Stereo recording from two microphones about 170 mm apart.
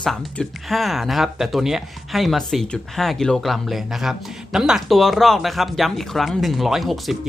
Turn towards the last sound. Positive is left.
turn(degrees=0)  # may be behind; listen again after turning